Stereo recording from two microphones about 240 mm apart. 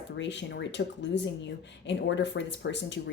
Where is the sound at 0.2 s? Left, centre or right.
Left.